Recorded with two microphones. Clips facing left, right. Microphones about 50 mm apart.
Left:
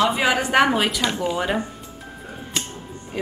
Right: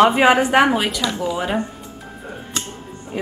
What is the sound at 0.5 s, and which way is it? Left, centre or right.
A woman's voice, centre.